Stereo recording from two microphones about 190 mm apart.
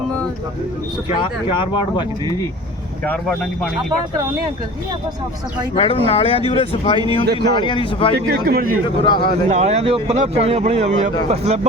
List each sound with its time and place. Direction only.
1.1 s speech: 25° left (ahead or behind)
3.0 s speech: 5° left (ahead or behind)
5.7 s speech: 30° left (ahead or behind)
8.1 s a man's voice: 50° right (ahead or behind)
9.2 s speech: 35° right (ahead or behind)